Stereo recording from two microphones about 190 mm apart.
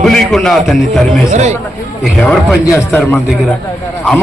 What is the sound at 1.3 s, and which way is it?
Speech, 35° right (ahead or behind).